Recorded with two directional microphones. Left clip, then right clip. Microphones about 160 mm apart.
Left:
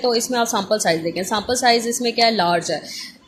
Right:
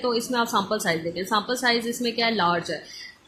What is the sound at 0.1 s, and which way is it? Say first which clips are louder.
A woman's voice: left 4 dB; 35° left (ahead or behind).